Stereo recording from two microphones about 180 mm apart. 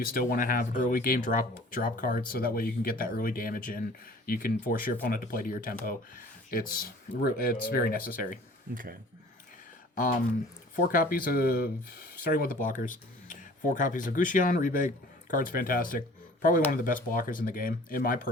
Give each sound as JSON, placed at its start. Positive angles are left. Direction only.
{"t": 0.0, "sound": "speech", "side_deg": 55}
{"t": 8.7, "sound": "speech", "side_deg": -50}
{"t": 10.8, "sound": "speech", "side_deg": 50}